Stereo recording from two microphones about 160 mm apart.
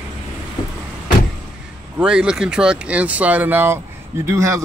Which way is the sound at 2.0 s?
5° right (ahead or behind).